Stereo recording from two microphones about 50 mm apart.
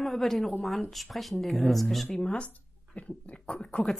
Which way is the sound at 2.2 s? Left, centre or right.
Centre.